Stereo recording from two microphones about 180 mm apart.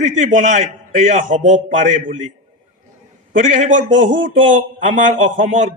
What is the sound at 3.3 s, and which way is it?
A man's voice, 45° right (ahead or behind).